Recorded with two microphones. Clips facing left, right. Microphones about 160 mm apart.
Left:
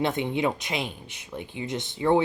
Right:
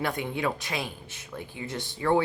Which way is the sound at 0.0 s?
20° left (ahead or behind).